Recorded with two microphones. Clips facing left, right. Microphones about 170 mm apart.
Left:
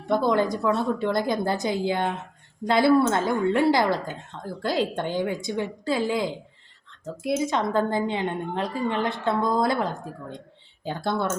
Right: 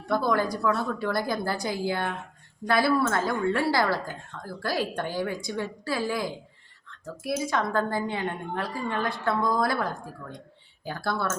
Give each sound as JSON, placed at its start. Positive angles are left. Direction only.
{"t": 0.1, "sound": "a woman's voice", "side_deg": 20}